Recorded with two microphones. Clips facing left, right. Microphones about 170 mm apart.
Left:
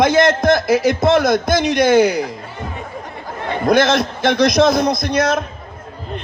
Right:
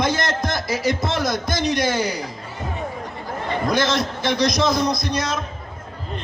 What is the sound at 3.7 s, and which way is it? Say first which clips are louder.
A man's voice: left 8 dB; 55° left (ahead or behind).